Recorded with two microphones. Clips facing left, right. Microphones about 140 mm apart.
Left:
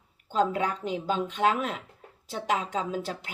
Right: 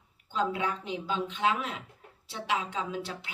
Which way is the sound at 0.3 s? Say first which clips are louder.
Left 4 dB; 40° left (ahead or behind).